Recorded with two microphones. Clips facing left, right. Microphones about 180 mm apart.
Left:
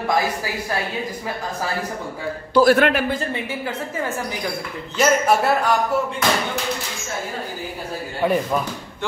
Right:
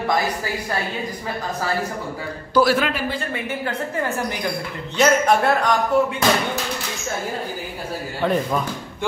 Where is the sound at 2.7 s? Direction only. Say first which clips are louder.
Left 5 dB; 65° left (ahead or behind).